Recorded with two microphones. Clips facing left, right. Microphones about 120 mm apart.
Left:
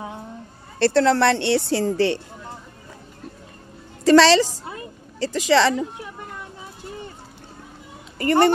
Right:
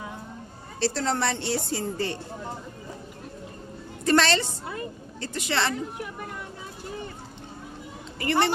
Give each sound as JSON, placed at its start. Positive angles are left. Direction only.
{"t": 0.7, "sound": "a woman's voice", "side_deg": 65}
{"t": 4.0, "sound": "a woman's voice", "side_deg": 90}
{"t": 8.2, "sound": "speech", "side_deg": 45}